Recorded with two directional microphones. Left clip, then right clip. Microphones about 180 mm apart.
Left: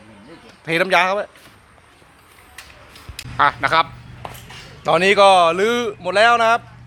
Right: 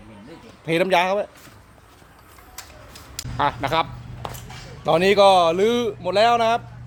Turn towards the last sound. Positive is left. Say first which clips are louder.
# left 4 dB
turn(degrees=0)  # may be behind; listen again after turning